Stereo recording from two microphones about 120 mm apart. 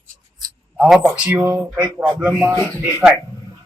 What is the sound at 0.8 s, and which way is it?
A man's voice, 15° right (ahead or behind).